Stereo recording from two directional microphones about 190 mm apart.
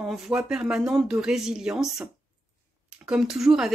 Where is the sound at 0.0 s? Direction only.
5° right (ahead or behind).